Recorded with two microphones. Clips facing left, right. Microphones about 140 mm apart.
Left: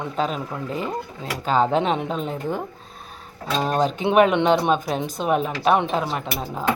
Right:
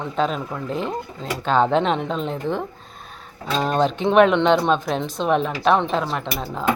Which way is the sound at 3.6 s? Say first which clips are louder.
Right 2 dB; 5° left (ahead or behind).